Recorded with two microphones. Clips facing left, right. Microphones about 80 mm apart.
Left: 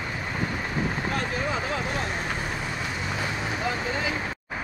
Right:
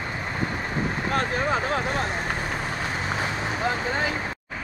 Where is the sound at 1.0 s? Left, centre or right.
Right.